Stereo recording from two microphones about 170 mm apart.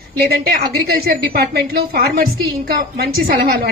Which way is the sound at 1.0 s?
65° right (ahead or behind).